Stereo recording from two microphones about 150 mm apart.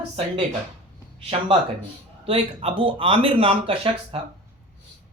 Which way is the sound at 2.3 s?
40° right (ahead or behind).